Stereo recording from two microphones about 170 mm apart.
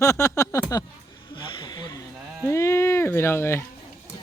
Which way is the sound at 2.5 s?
15° left (ahead or behind).